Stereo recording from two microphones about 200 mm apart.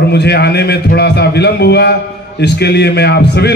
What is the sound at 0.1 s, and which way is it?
A man's voice, 55° left (ahead or behind).